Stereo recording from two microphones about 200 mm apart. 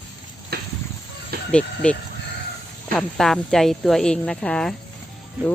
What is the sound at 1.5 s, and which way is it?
Speech, 5° left (ahead or behind).